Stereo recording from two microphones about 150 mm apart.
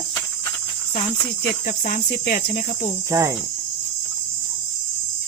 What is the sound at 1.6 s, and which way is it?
Speech, 70° left (ahead or behind).